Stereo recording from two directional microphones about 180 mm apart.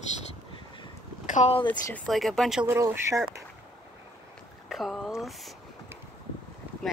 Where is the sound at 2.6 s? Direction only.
15° right (ahead or behind).